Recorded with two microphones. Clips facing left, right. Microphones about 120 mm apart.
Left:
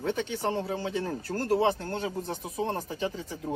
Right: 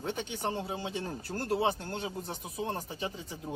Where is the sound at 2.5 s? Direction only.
35° left (ahead or behind).